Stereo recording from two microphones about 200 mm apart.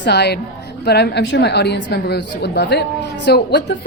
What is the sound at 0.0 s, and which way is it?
A woman's voice, 55° left (ahead or behind).